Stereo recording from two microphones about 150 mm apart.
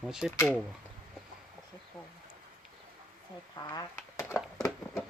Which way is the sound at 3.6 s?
25° left (ahead or behind).